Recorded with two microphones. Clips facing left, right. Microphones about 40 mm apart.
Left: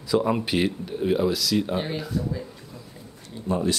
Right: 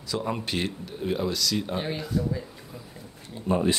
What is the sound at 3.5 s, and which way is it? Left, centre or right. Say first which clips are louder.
Speech: right 1 dB; right.